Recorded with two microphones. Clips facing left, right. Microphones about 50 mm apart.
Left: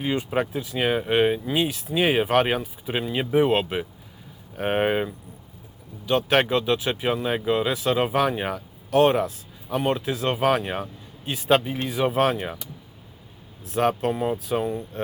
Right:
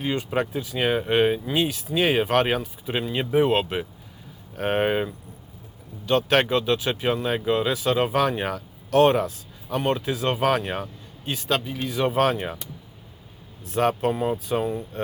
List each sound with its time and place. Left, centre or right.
0.0 s speech: centre
11.4 s speech: left
11.9 s speech: centre
13.7 s speech: centre